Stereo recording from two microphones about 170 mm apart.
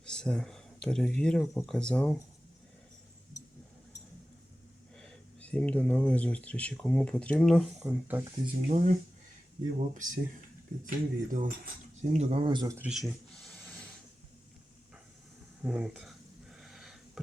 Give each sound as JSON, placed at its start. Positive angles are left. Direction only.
{"t": 0.0, "sound": "speech", "side_deg": 5}
{"t": 4.9, "sound": "speech", "side_deg": 5}
{"t": 8.6, "sound": "speech", "side_deg": -50}
{"t": 12.1, "sound": "speech", "side_deg": -35}
{"t": 12.7, "sound": "a sound", "side_deg": -5}
{"t": 15.6, "sound": "a sound", "side_deg": -5}